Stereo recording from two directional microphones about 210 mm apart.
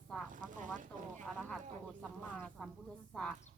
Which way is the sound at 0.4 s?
40° right (ahead or behind).